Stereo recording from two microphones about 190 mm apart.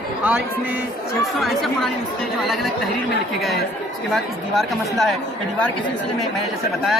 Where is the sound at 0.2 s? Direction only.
10° right (ahead or behind).